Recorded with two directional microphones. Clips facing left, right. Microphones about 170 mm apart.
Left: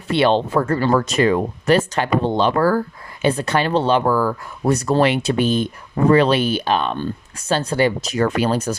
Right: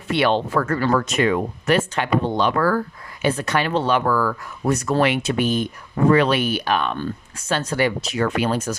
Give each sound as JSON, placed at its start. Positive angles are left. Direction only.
{"t": 0.1, "sound": "speech", "side_deg": 30}